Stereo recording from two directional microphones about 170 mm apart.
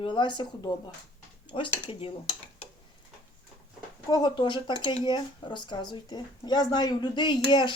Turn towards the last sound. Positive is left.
turn(degrees=25)  # may be behind; listen again after turning